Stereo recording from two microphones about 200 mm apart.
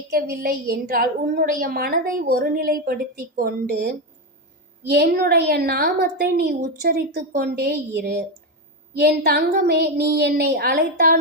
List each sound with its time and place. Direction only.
0.1 s a woman's voice: 45° right (ahead or behind)